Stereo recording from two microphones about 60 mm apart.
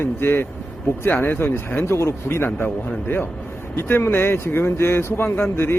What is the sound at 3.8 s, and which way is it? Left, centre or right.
Speech, left.